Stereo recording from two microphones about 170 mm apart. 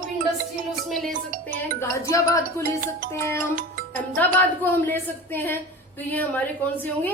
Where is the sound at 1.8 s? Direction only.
20° left (ahead or behind).